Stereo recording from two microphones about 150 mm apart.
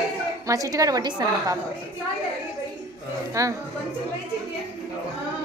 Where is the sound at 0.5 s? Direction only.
20° right (ahead or behind).